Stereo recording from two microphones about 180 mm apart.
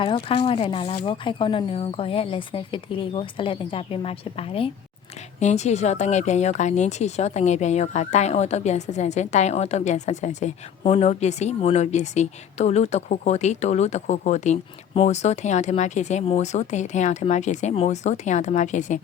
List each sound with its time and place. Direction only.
0.3 s a woman's voice: 30° left (ahead or behind)